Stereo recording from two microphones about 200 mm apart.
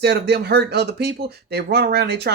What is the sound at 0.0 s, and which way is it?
A man's voice, 55° right (ahead or behind).